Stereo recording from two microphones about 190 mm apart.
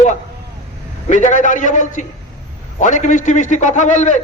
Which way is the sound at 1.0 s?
40° left (ahead or behind).